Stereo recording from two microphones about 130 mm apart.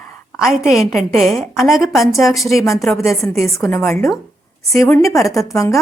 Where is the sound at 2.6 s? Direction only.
20° left (ahead or behind).